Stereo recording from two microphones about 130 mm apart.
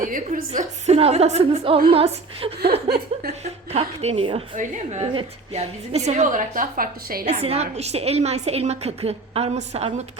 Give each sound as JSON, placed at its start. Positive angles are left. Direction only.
{"t": 0.0, "sound": "a woman's voice", "side_deg": -90}
{"t": 0.9, "sound": "a woman's voice", "side_deg": -50}
{"t": 4.5, "sound": "a woman's voice", "side_deg": -70}
{"t": 5.5, "sound": "a woman's voice", "side_deg": -60}
{"t": 7.3, "sound": "a woman's voice", "side_deg": -55}